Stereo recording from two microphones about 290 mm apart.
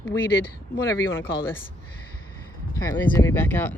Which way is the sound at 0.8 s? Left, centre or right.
Centre.